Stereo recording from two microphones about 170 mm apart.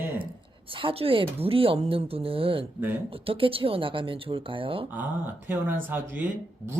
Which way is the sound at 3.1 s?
30° right (ahead or behind).